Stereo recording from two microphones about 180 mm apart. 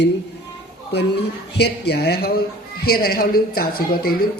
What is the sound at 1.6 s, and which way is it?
Speech, 65° left (ahead or behind).